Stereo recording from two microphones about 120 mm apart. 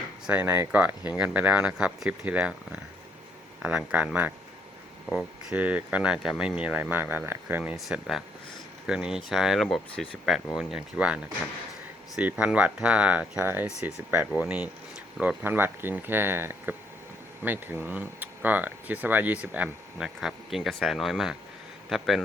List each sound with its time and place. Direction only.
0.3 s speech: 15° right (ahead or behind)
3.6 s speech: 10° right (ahead or behind)
7.9 s speech: centre (ahead or behind)